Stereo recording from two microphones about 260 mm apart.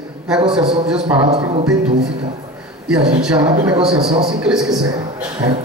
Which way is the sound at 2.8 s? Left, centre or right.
Centre.